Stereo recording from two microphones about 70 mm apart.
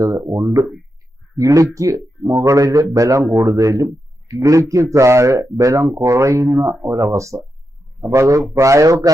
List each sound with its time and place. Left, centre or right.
0.0 s a man's voice: right